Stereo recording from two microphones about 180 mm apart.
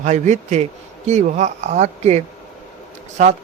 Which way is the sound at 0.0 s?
40° right (ahead or behind).